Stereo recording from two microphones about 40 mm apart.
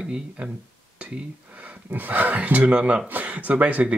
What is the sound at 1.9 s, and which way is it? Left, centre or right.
Speech, right.